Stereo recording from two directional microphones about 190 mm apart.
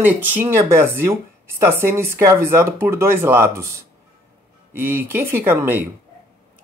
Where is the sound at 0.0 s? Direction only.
10° right (ahead or behind).